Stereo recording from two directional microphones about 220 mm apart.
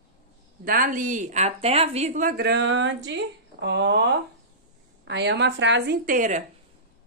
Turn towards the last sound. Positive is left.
turn(degrees=-35)  # may be behind; listen again after turning